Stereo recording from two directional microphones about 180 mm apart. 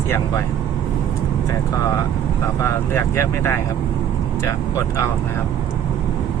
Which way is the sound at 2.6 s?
15° left (ahead or behind).